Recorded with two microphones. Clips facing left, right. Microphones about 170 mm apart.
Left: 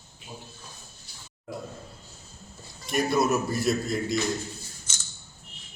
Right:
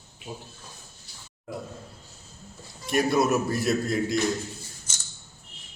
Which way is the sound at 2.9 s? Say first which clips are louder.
Right 2 dB; 5° right (ahead or behind).